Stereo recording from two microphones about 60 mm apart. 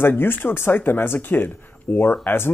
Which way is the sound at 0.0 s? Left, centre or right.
Left.